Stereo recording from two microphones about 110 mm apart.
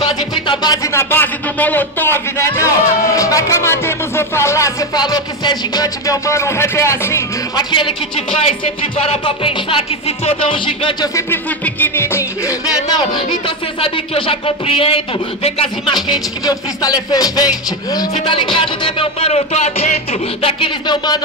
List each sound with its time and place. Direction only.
0.0 s music: 45° left (ahead or behind)
0.9 s a man's voice: 20° left (ahead or behind)
7.5 s music: 50° left (ahead or behind)
8.5 s speech: 65° left (ahead or behind)
9.2 s music: 50° left (ahead or behind)
11.6 s music: 20° left (ahead or behind); by 15.9 s 65° left (ahead or behind)
15.9 s music: 40° left (ahead or behind); by 20.7 s 65° left (ahead or behind)
20.8 s speech: 40° left (ahead or behind)